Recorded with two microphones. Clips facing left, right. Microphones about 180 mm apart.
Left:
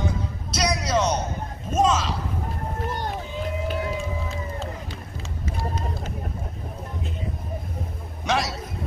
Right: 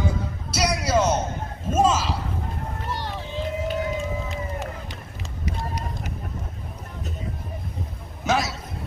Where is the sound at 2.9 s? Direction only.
45° left (ahead or behind).